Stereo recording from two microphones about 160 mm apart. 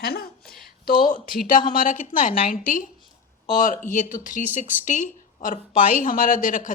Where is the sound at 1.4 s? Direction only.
60° left (ahead or behind).